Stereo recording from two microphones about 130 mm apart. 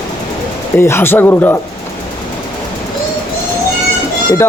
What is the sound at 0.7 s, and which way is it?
Speech, 20° left (ahead or behind).